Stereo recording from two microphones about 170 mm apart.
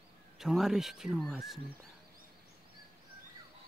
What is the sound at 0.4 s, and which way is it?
Speech, centre (ahead or behind).